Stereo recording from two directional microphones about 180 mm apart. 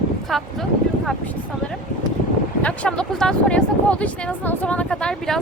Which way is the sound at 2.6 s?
5° left (ahead or behind).